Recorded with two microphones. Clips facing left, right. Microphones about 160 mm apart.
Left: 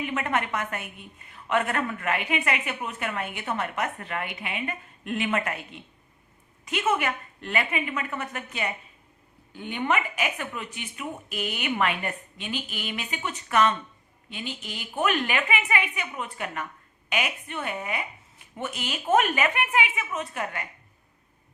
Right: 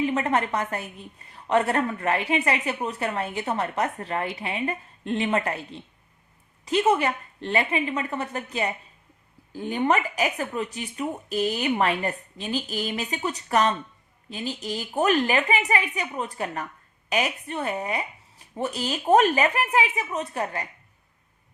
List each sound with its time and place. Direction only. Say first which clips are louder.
0.0 s a woman's voice: right 4 dB; 35° right (ahead or behind)